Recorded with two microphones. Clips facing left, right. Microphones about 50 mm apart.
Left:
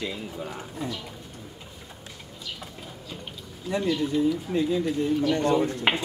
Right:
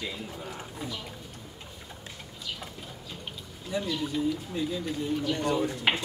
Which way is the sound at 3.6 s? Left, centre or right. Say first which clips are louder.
Left 6 dB; left.